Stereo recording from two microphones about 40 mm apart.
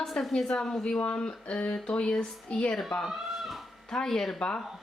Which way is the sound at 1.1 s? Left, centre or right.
Left.